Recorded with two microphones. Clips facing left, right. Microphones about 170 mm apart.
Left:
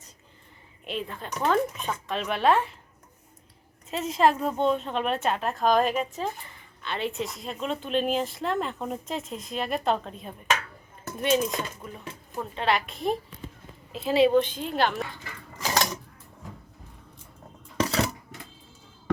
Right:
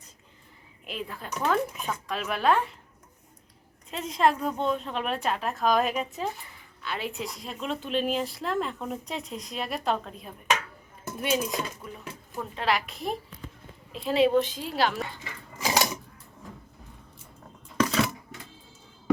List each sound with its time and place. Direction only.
0.9 s speech: 5° right (ahead or behind)
3.8 s speech: 5° left (ahead or behind)
4.5 s speech: 30° left (ahead or behind)
4.8 s speech: centre (ahead or behind)
15.6 s typewriter: 10° right (ahead or behind)
17.7 s coin: 30° left (ahead or behind)